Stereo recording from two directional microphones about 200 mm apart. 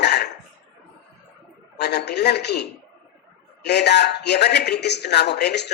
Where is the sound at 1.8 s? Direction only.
55° left (ahead or behind).